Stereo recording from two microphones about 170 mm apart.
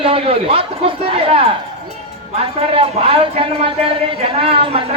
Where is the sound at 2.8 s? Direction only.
30° right (ahead or behind).